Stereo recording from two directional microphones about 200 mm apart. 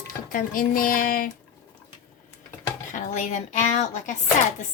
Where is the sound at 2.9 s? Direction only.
40° left (ahead or behind).